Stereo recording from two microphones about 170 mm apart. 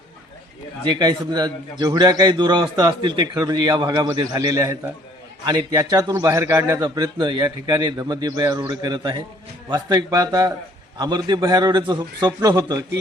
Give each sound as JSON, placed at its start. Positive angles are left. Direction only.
{"t": 0.9, "sound": "a man's voice", "side_deg": -25}